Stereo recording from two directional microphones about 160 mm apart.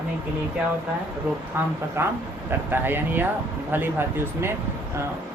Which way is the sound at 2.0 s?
15° right (ahead or behind).